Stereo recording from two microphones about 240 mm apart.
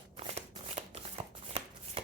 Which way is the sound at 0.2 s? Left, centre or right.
Right.